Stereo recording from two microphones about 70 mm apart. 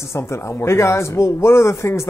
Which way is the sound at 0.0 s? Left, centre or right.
Left.